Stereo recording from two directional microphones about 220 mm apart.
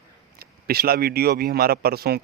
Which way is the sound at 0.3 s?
45° right (ahead or behind).